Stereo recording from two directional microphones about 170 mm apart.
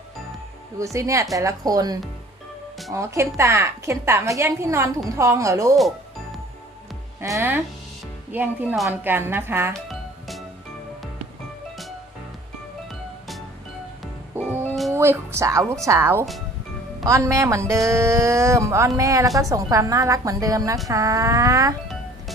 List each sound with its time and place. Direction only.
0.9 s a woman's voice: 20° right (ahead or behind)
7.2 s a woman's voice: 15° right (ahead or behind)
9.7 s music: centre (ahead or behind)
12.9 s music: centre (ahead or behind)
14.7 s music: centre (ahead or behind)
14.9 s a woman's voice: 15° right (ahead or behind)